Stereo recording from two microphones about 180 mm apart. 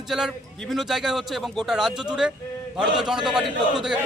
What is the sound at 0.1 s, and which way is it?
A man's voice, 5° right (ahead or behind).